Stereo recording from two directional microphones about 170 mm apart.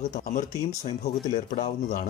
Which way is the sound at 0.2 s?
50° left (ahead or behind).